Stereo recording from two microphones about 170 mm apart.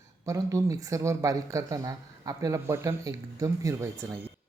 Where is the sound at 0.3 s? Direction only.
20° right (ahead or behind).